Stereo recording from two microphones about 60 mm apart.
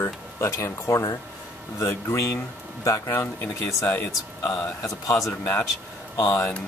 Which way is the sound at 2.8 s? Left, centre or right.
Left.